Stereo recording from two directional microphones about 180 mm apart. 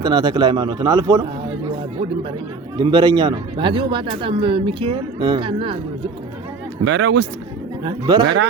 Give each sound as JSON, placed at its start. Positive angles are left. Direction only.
{"t": 0.0, "sound": "a man's voice", "side_deg": -25}
{"t": 2.7, "sound": "a man's voice", "side_deg": -25}
{"t": 6.8, "sound": "speech", "side_deg": -75}
{"t": 7.9, "sound": "a man's voice", "side_deg": -25}
{"t": 8.2, "sound": "speech", "side_deg": -70}